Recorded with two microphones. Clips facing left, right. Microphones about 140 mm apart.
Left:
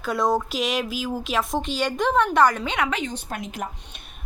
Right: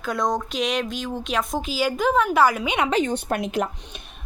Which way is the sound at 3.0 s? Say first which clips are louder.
Right 6 dB; 60° right (ahead or behind).